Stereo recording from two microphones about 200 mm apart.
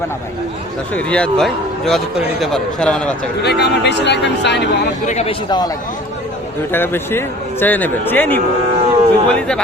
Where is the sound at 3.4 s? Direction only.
55° left (ahead or behind).